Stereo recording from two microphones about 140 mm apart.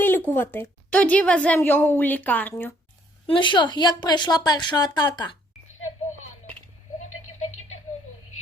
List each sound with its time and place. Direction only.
0.0 s a woman's voice: 15° left (ahead or behind)
3.2 s a woman's voice: 35° left (ahead or behind)